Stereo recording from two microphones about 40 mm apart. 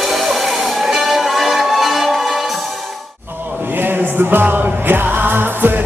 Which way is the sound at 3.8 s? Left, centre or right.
Right.